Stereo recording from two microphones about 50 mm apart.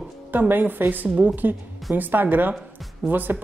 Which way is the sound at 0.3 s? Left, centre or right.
Right.